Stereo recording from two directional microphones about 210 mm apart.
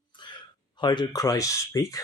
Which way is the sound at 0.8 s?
20° left (ahead or behind).